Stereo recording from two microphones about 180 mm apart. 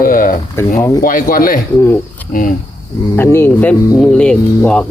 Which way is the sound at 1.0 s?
50° left (ahead or behind).